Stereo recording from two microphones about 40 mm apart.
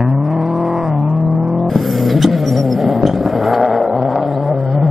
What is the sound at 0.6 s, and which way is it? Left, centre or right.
Vehicle, centre.